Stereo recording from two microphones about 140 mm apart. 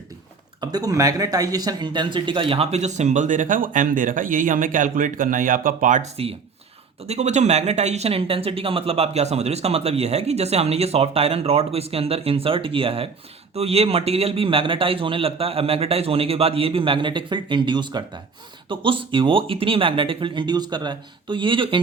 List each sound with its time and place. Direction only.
0.6 s speech: 25° right (ahead or behind); by 6.1 s 65° right (ahead or behind)
7.1 s speech: 55° right (ahead or behind); by 21.8 s 35° right (ahead or behind)